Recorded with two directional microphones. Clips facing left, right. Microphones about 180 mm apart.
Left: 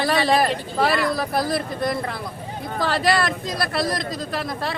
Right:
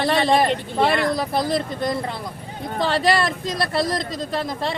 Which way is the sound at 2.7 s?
25° right (ahead or behind).